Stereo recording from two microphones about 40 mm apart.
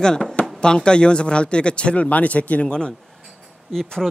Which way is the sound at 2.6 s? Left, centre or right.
Left.